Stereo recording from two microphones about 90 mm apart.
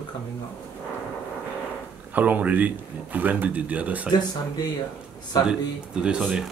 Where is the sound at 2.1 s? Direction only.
20° right (ahead or behind).